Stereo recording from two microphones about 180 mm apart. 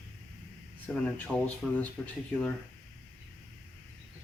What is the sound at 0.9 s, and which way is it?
Speech, 5° left (ahead or behind).